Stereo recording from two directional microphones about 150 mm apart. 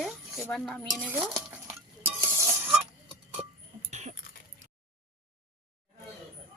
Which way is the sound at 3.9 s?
50° right (ahead or behind).